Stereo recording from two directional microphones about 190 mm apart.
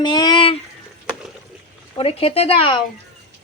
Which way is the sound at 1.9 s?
30° left (ahead or behind).